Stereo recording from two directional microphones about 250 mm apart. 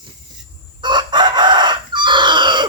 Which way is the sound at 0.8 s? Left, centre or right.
Centre.